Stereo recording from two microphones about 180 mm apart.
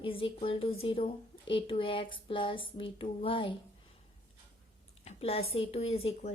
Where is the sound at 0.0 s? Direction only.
30° left (ahead or behind).